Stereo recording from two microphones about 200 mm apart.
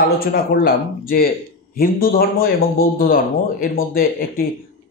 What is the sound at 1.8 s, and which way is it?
A man's voice, 50° left (ahead or behind).